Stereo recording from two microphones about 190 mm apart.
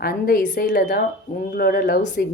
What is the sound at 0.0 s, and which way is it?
Speech, 50° left (ahead or behind).